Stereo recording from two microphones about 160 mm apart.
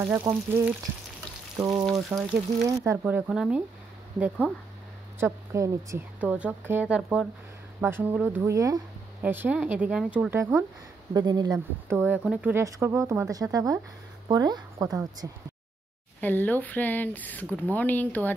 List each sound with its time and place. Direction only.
0.3 s speech: 15° right (ahead or behind)
1.9 s speech: centre (ahead or behind)
2.8 s speech: 15° right (ahead or behind)
5.2 s speech: 20° right (ahead or behind)
6.1 s speech: 10° right (ahead or behind)
11.1 s speech: 25° right (ahead or behind)
12.0 s speech: 10° right (ahead or behind)
12.6 s speech: 20° right (ahead or behind)
16.2 s speech: 10° left (ahead or behind)